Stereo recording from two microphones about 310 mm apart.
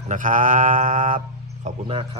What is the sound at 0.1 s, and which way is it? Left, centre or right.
Speech, right.